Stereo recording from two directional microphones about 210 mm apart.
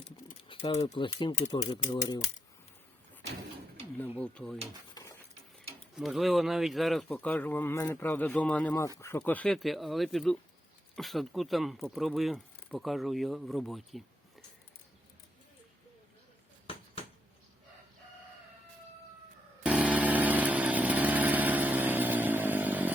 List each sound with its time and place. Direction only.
0.4 s speech: 25° left (ahead or behind)
4.2 s speech: 5° left (ahead or behind)
5.0 s a sound: 20° left (ahead or behind)
6.0 s a man's voice: centre (ahead or behind)
19.6 s chainsaw: 5° right (ahead or behind)